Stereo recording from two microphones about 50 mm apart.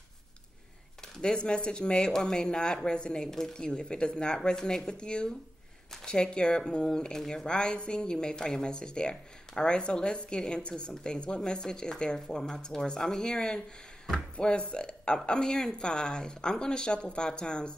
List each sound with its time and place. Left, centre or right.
1.1 s speech: centre